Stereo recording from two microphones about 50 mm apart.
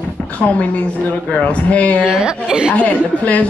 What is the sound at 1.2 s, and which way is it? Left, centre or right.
Speech, left.